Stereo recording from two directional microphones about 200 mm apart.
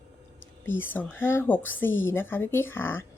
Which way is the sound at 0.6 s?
10° left (ahead or behind).